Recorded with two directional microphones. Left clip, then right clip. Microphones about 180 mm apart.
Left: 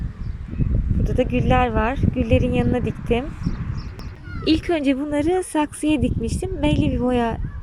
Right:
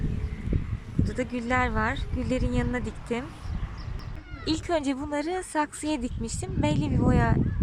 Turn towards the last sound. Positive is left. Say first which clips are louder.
# left 5 dB
turn(degrees=15)  # may be behind; listen again after turning